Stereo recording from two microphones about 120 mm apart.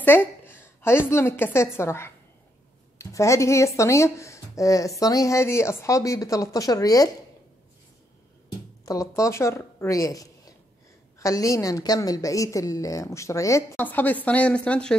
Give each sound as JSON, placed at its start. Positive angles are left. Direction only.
{"t": 0.0, "sound": "a woman's voice", "side_deg": 20}
{"t": 8.8, "sound": "a woman's voice", "side_deg": 25}